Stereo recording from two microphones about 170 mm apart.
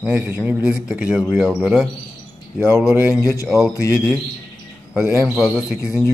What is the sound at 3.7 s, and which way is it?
Speech, 20° left (ahead or behind).